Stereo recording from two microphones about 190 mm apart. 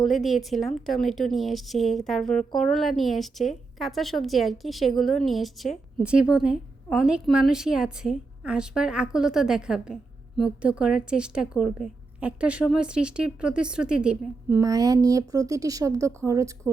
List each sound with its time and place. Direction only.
0.0 s a woman's voice: centre (ahead or behind)
14.6 s speech: 20° right (ahead or behind)